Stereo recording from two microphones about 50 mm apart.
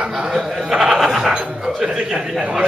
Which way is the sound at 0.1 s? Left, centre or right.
Centre.